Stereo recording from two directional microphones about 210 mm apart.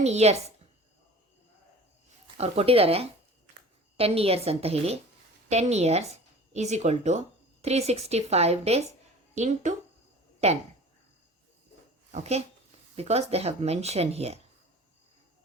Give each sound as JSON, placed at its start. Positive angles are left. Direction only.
{"t": 0.0, "sound": "speech", "side_deg": -30}
{"t": 2.4, "sound": "speech", "side_deg": -30}
{"t": 12.1, "sound": "speech", "side_deg": -30}